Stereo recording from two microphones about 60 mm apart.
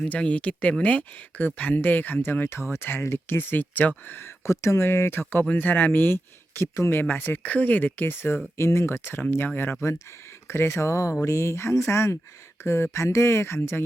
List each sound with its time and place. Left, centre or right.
0.0 s speech: centre
4.4 s speech: left
5.5 s speech: left
6.6 s speech: left
7.0 s speech: left
8.5 s speech: left
9.8 s speech: left